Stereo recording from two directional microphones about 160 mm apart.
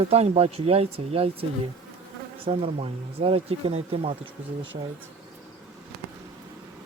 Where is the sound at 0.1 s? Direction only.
40° right (ahead or behind).